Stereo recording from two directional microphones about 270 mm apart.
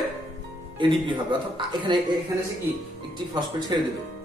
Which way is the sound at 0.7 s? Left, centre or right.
Centre.